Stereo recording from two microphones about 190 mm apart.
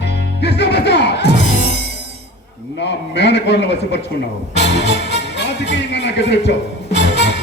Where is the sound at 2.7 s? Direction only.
65° left (ahead or behind).